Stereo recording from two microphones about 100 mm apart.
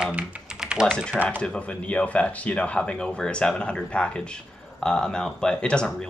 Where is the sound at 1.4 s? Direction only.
10° left (ahead or behind).